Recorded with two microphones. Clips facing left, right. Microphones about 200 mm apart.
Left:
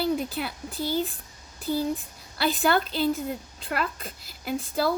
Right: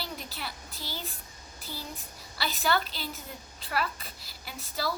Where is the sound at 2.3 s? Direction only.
50° left (ahead or behind).